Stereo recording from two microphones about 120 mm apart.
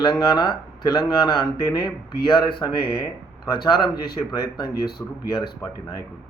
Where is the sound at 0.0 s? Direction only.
35° left (ahead or behind).